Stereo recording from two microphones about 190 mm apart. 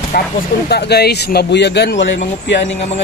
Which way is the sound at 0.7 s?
60° left (ahead or behind).